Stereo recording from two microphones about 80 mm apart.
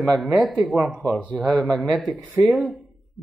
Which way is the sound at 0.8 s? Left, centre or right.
Centre.